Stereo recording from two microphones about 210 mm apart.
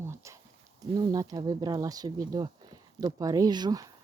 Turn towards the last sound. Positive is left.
turn(degrees=-20)  # may be behind; listen again after turning